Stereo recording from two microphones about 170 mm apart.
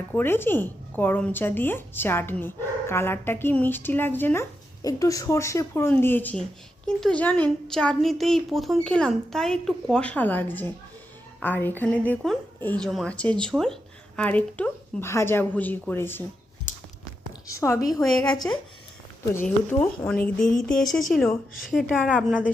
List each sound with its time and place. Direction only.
0.1 s a woman's voice: 10° left (ahead or behind)
17.5 s a woman's voice: 15° left (ahead or behind)
19.7 s a woman's voice: 10° left (ahead or behind)